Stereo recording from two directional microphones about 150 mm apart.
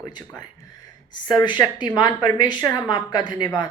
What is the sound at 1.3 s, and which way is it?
Speech, 30° left (ahead or behind).